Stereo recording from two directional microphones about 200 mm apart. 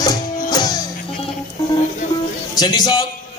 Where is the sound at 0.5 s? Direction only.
20° left (ahead or behind).